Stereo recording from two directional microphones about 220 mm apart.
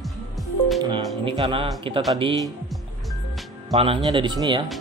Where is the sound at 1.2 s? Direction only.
25° right (ahead or behind).